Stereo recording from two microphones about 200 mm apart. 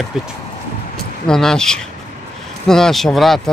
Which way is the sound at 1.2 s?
5° left (ahead or behind).